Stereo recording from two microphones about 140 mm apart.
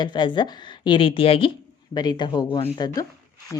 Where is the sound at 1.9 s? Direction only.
30° left (ahead or behind).